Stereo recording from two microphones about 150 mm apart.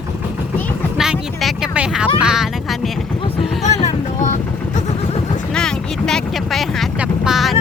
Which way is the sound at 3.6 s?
50° left (ahead or behind).